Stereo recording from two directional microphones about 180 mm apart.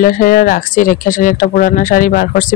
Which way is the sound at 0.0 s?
50° left (ahead or behind).